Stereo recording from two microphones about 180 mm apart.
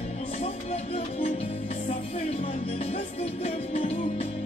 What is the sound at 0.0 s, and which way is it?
Music, 35° left (ahead or behind).